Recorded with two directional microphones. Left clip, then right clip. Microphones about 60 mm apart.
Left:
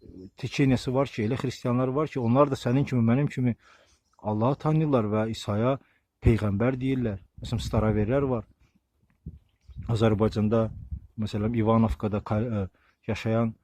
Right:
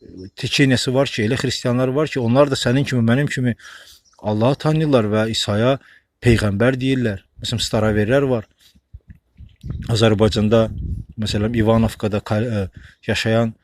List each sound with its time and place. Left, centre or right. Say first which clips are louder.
0.3 s speech: right 9 dB; left
3.7 s speech: right 17 dB; centre
9.8 s speech: right 9 dB; left
10.1 s speech: right 9 dB; centre
11.5 s speech: right 6 dB; left
13.1 s speech: right 10 dB; centre